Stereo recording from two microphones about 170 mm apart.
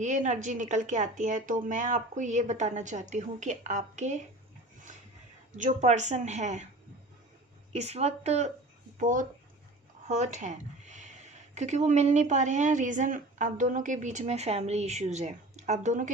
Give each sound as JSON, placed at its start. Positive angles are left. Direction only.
{"t": 0.0, "sound": "speech", "side_deg": -45}
{"t": 5.5, "sound": "speech", "side_deg": -45}
{"t": 7.7, "sound": "a woman's voice", "side_deg": -40}